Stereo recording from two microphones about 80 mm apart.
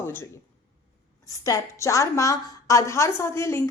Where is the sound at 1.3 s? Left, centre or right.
Left.